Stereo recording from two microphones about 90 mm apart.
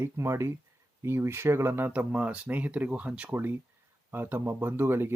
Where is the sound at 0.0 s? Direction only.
30° right (ahead or behind).